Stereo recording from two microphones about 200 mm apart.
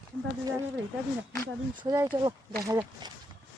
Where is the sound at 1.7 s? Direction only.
15° right (ahead or behind).